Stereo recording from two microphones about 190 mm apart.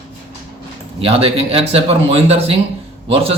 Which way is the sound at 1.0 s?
30° right (ahead or behind).